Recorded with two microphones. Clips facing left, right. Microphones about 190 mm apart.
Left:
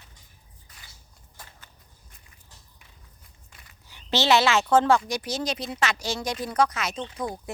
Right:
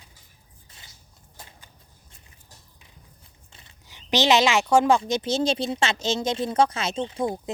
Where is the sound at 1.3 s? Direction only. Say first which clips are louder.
Right 1 dB; 20° right (ahead or behind).